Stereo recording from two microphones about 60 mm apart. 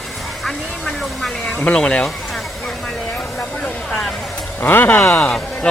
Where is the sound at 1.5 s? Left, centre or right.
Left.